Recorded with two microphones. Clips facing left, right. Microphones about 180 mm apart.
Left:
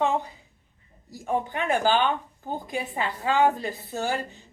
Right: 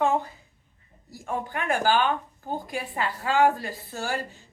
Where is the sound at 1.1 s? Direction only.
20° left (ahead or behind).